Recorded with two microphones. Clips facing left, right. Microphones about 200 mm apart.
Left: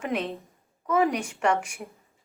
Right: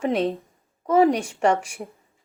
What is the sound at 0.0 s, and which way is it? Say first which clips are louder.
A woman's voice: right 7 dB; 35° right (ahead or behind).